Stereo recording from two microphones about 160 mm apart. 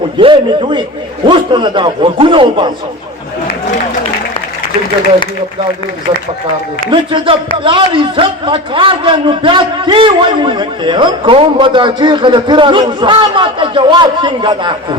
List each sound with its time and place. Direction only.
0.2 s a man's voice: 30° right (ahead or behind)
6.9 s a man's voice: 30° right (ahead or behind)